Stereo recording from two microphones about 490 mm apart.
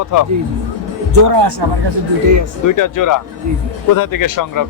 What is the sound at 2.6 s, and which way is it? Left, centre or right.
Speech, left.